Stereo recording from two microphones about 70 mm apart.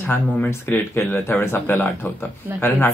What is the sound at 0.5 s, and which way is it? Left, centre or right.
Speech, left.